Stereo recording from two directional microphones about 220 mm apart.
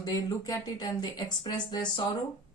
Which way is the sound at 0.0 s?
15° left (ahead or behind).